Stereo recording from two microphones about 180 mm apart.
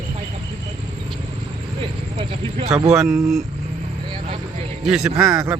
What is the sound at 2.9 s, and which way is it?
Speech, centre (ahead or behind).